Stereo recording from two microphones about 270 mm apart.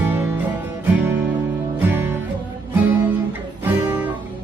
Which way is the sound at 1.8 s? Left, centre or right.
Centre.